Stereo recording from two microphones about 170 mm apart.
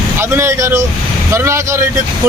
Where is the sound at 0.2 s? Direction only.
15° right (ahead or behind).